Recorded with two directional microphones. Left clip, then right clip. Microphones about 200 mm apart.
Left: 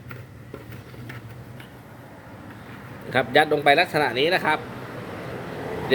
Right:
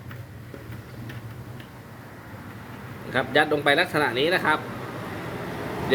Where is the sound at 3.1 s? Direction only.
25° left (ahead or behind).